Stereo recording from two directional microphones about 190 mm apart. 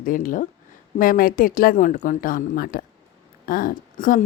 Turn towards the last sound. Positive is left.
turn(degrees=45)  # may be behind; listen again after turning